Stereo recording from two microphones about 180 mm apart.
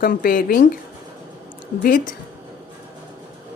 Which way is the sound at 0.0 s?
50° left (ahead or behind).